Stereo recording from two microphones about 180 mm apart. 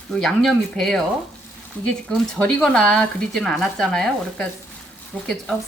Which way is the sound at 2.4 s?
5° left (ahead or behind).